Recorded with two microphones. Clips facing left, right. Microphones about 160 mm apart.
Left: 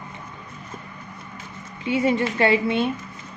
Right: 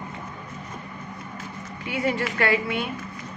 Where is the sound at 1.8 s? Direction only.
20° left (ahead or behind).